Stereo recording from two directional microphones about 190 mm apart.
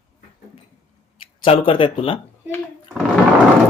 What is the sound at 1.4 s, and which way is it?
Speech, 30° left (ahead or behind).